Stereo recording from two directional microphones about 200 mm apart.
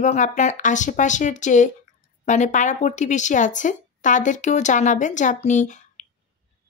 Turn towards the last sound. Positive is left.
turn(degrees=40)  # may be behind; listen again after turning